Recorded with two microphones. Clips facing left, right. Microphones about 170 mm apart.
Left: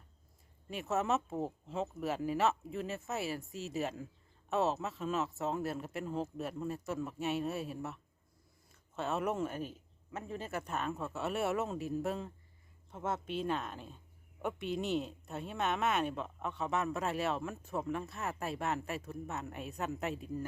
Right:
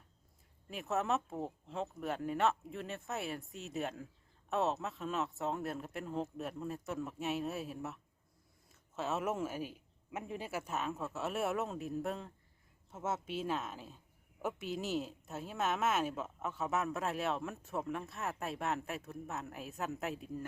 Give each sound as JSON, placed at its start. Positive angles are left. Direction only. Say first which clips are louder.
{"t": 0.7, "sound": "a woman's voice", "louder": "left 2 dB", "side_deg": 0}